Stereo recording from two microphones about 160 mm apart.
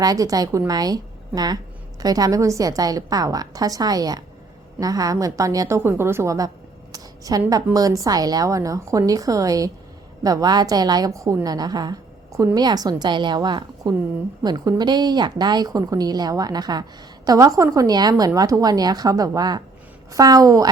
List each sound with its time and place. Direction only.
0.0 s a woman's voice: 20° right (ahead or behind)